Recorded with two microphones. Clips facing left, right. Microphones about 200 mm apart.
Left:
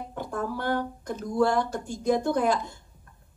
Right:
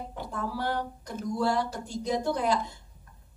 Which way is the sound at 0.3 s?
50° left (ahead or behind).